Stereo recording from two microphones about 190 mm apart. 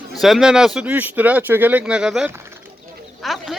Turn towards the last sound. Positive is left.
turn(degrees=0)  # may be behind; listen again after turning